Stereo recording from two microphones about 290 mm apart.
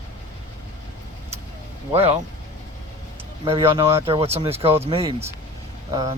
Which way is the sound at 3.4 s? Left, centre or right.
Centre.